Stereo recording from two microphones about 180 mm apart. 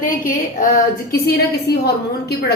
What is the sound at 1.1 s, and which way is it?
A woman's voice, 60° left (ahead or behind).